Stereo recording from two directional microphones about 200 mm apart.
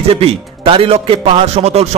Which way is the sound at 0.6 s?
25° right (ahead or behind).